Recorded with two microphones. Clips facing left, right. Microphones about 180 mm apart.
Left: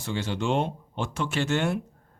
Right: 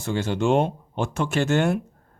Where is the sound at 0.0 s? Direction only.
50° right (ahead or behind).